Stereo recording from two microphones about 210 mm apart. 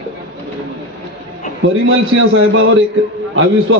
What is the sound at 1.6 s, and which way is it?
A man's voice, 65° right (ahead or behind).